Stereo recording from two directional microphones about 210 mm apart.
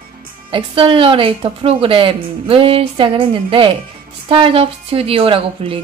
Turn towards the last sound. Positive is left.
turn(degrees=-25)  # may be behind; listen again after turning